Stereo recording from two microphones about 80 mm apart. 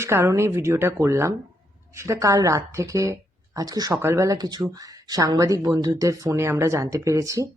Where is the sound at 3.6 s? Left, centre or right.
Right.